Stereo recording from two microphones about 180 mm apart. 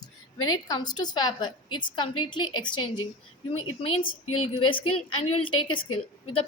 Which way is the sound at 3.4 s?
30° left (ahead or behind).